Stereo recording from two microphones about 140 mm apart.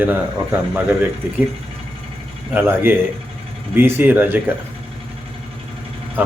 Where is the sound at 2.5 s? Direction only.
15° right (ahead or behind).